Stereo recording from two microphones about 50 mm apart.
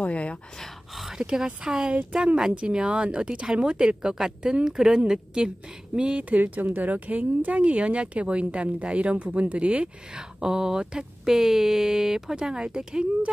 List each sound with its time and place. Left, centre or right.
0.0 s speech: left
0.9 s a sound: centre
1.2 s speech: centre